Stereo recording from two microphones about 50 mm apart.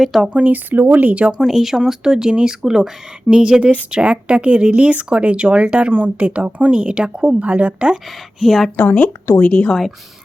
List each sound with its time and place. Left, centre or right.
0.0 s speech: centre
0.3 s speech: right
1.3 s speech: centre
8.4 s speech: centre
8.7 s speech: left
9.4 s speech: left